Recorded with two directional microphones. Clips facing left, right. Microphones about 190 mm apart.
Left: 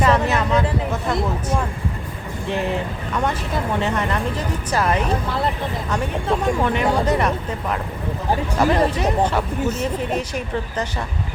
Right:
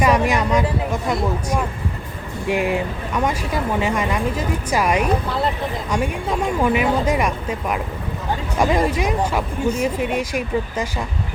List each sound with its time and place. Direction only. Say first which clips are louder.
0.0 s speech: right 1 dB; 15° right (ahead or behind)
2.5 s speech: right 3 dB; 10° right (ahead or behind)